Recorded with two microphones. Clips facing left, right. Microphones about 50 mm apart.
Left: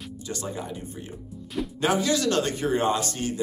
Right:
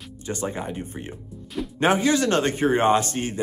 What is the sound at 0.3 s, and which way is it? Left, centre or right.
Speech, right.